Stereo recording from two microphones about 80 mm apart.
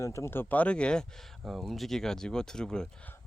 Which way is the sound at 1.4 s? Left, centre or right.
Centre.